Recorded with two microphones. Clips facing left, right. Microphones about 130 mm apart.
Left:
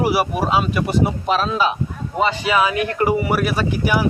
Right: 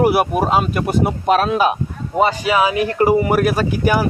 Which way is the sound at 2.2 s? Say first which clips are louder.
Right 3 dB; 45° right (ahead or behind).